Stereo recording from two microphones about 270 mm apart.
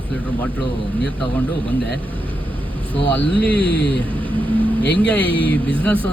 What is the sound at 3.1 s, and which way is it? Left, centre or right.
Speech, centre.